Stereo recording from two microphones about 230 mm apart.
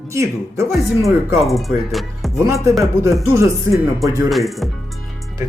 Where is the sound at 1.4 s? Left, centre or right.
Centre.